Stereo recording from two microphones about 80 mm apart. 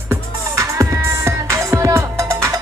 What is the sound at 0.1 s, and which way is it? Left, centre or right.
Music, right.